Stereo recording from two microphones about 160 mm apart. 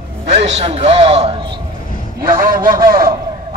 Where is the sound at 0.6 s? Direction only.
40° right (ahead or behind).